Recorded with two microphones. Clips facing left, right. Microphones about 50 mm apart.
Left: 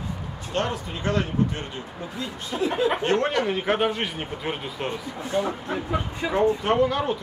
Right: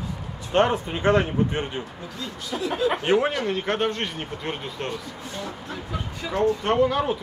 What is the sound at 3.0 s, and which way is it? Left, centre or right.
Speech, centre.